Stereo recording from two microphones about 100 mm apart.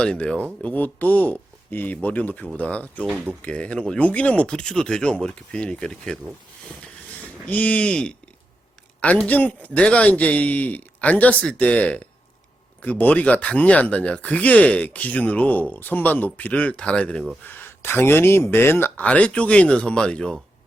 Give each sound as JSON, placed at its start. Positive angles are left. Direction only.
{"t": 0.0, "sound": "speech", "side_deg": 10}
{"t": 7.4, "sound": "speech", "side_deg": 15}